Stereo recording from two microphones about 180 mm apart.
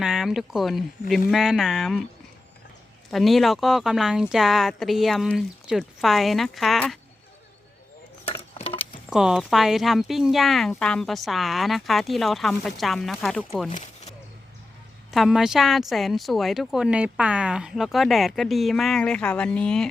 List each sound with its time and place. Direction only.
0.0 s speech: centre (ahead or behind)
3.1 s speech: centre (ahead or behind)
8.3 s a sound: 30° left (ahead or behind)
9.0 s speech: 5° right (ahead or behind)
13.7 s a sound: 45° left (ahead or behind)
15.1 s speech: centre (ahead or behind)